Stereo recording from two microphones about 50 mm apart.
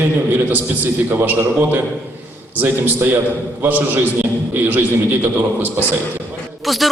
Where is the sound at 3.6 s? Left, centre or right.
Right.